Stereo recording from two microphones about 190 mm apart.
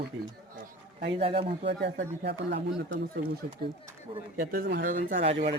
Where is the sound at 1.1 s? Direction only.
30° right (ahead or behind).